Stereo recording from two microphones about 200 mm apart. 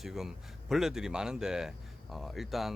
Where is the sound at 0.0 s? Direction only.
Centre (ahead or behind).